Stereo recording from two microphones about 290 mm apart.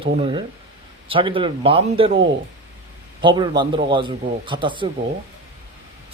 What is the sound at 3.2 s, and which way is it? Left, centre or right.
A man's voice, centre.